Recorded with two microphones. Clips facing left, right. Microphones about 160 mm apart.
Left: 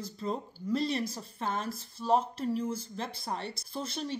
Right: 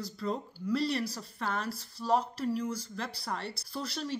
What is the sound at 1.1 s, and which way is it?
Speech, 20° left (ahead or behind).